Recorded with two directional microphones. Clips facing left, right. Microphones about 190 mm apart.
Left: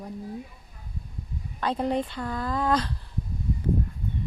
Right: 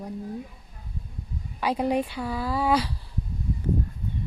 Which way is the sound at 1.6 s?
10° right (ahead or behind).